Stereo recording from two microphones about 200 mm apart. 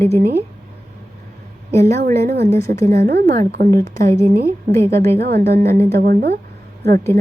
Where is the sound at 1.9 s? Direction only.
50° right (ahead or behind).